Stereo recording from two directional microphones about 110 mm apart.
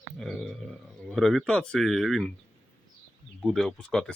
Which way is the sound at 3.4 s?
Centre (ahead or behind).